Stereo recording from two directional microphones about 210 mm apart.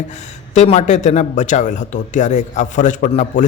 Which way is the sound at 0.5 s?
30° left (ahead or behind).